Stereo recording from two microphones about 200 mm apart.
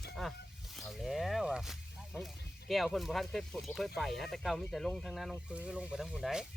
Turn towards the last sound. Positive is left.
turn(degrees=0)  # may be behind; listen again after turning